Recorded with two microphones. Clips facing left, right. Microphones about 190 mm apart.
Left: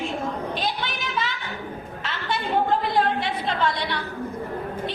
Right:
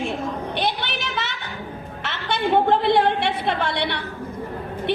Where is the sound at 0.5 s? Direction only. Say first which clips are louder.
Right 3 dB; 75° right (ahead or behind).